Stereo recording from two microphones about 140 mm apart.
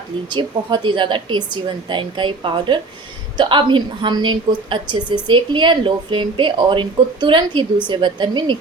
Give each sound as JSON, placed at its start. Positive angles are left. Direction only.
{"t": 0.3, "sound": "a woman's voice", "side_deg": -35}